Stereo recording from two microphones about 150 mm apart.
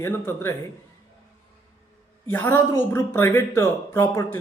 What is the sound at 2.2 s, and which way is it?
Speech, 15° left (ahead or behind).